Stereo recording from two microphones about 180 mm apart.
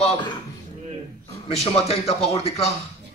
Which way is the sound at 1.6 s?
35° left (ahead or behind).